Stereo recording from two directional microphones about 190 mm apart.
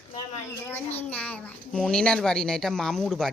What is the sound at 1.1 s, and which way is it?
A woman's voice, 5° left (ahead or behind).